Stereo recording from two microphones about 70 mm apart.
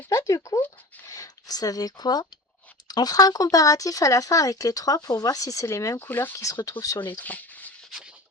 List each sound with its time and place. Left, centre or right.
0.1 s speech: left
6.0 s speech: left
6.3 s speech: left
6.6 s speech: left
7.1 s a sound: left